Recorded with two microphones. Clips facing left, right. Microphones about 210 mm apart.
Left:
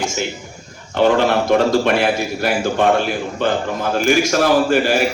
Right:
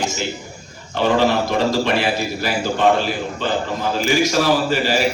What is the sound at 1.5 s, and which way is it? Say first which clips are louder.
A man's voice: left 4 dB; 55° left (ahead or behind).